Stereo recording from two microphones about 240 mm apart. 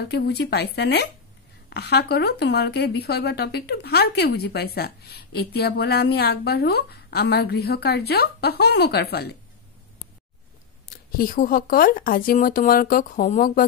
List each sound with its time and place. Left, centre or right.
0.0 s speech: left
11.1 s speech: left